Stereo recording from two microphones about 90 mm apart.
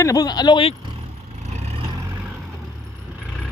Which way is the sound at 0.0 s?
40° left (ahead or behind).